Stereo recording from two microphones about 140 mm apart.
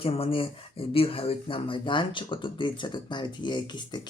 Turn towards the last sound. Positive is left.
turn(degrees=30)  # may be behind; listen again after turning